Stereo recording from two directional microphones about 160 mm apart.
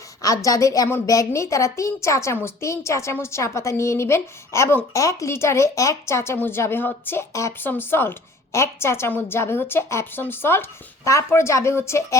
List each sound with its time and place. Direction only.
0.2 s a woman's voice: 20° left (ahead or behind)